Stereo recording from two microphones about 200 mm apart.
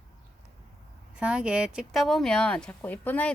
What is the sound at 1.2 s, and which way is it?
Speech, 5° right (ahead or behind).